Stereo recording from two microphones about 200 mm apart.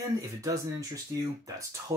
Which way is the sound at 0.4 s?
15° right (ahead or behind).